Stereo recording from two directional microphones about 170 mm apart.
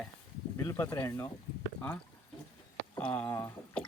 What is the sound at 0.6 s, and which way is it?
Speech, 20° left (ahead or behind).